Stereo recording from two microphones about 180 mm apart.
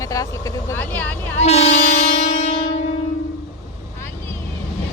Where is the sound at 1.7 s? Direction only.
40° left (ahead or behind).